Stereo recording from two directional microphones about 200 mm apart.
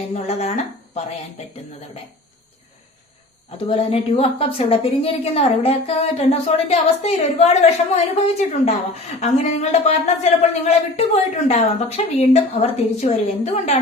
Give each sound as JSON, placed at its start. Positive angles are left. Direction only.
{"t": 0.1, "sound": "a woman's voice", "side_deg": 30}
{"t": 3.7, "sound": "a woman's voice", "side_deg": 30}